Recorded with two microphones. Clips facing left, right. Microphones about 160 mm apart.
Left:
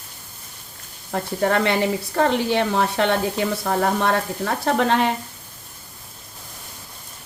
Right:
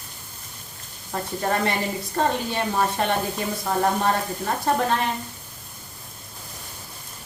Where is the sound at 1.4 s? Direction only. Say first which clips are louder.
Left 5 dB; 75° left (ahead or behind).